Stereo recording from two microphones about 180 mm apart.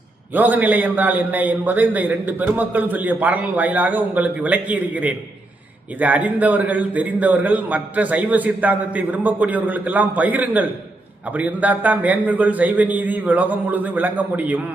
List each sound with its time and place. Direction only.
0.3 s a man's voice: 10° right (ahead or behind)